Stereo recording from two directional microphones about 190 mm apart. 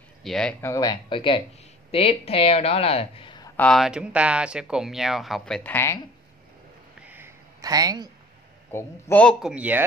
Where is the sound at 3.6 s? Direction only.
Centre (ahead or behind).